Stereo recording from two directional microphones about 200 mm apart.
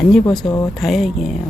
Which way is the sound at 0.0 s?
Centre (ahead or behind).